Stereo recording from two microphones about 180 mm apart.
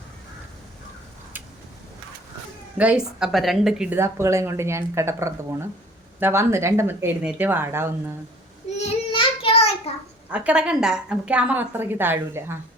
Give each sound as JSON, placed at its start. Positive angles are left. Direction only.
{"t": 2.7, "sound": "a woman's voice", "side_deg": -5}
{"t": 8.8, "sound": "child singing", "side_deg": 30}
{"t": 10.3, "sound": "a woman's voice", "side_deg": -5}